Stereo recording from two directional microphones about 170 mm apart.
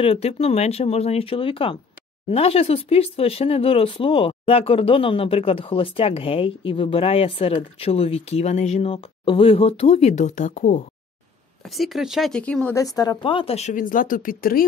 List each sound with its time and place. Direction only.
0.0 s speech: 35° left (ahead or behind)
11.6 s speech: centre (ahead or behind)
12.7 s speech: 20° left (ahead or behind); by 14.7 s 60° left (ahead or behind)